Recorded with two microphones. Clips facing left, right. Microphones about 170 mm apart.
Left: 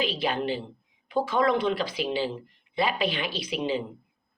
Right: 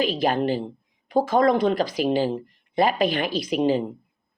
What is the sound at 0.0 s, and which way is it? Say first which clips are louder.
Speech: right 6 dB; 45° right (ahead or behind).